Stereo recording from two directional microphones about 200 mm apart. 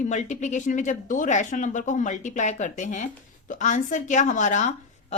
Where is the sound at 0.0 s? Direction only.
35° left (ahead or behind).